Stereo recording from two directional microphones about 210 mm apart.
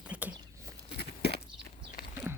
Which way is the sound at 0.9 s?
50° left (ahead or behind).